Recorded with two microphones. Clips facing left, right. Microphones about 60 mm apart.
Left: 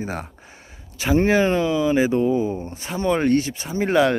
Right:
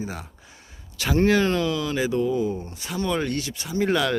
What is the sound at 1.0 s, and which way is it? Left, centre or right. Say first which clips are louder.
Speech: left 2 dB; left.